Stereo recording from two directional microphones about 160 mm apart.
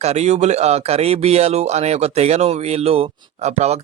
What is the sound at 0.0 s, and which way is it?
Speech, 45° right (ahead or behind).